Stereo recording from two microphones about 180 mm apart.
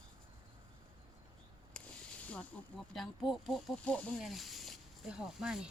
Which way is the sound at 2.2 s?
5° left (ahead or behind).